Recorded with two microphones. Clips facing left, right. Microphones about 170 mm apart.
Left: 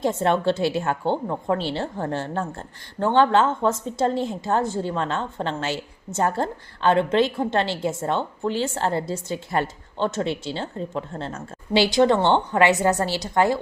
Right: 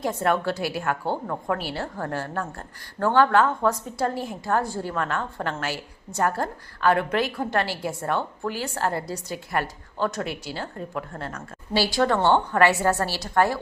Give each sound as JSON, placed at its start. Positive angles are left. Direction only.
{"t": 0.0, "sound": "a woman's voice", "side_deg": 25}